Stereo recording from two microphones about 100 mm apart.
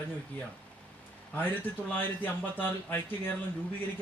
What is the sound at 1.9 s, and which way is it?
Speech, 20° left (ahead or behind).